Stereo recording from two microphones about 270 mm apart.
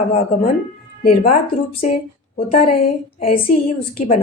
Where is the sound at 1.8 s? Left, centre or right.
Left.